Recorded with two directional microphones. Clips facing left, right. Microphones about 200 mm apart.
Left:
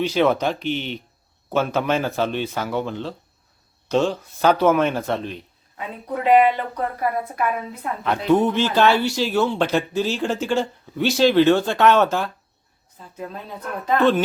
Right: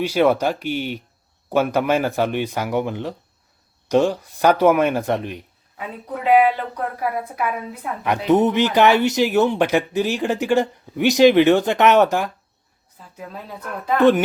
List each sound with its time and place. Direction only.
0.0 s a woman's voice: 10° right (ahead or behind)
5.7 s a woman's voice: 5° right (ahead or behind)
13.8 s a woman's voice: 15° right (ahead or behind)